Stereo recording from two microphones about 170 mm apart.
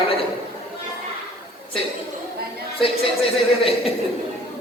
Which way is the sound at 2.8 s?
35° left (ahead or behind).